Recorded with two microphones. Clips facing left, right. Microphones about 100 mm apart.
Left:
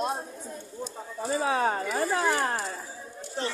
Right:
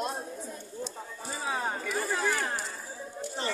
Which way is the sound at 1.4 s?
80° left.